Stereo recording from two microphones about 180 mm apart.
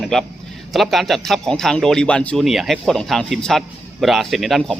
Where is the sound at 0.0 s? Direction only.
Centre (ahead or behind).